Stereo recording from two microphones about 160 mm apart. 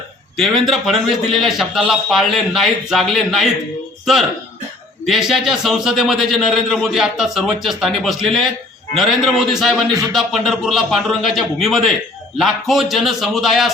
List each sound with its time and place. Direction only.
0.3 s a man's voice: centre (ahead or behind)
9.9 s music: 20° right (ahead or behind)
10.2 s a man's voice: centre (ahead or behind)